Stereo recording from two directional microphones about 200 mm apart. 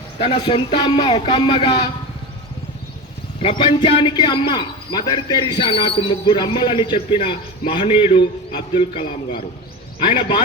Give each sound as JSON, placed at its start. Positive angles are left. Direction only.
{"t": 0.2, "sound": "a man's voice", "side_deg": 25}
{"t": 3.4, "sound": "a man's voice", "side_deg": 25}